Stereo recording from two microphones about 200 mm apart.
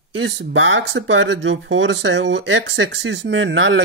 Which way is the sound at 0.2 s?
70° right (ahead or behind).